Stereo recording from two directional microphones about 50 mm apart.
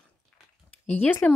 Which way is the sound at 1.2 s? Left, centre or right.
Left.